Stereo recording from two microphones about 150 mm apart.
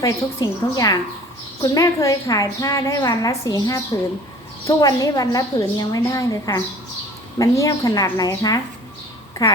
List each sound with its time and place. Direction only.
0.0 s a woman's voice: 25° left (ahead or behind)